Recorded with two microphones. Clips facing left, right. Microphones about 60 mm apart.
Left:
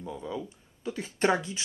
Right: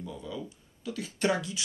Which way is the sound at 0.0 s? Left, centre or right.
Left.